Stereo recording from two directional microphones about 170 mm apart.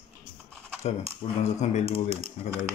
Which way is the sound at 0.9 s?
40° left (ahead or behind).